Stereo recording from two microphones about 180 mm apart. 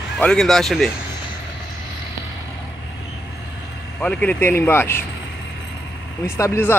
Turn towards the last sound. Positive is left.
turn(degrees=15)  # may be behind; listen again after turning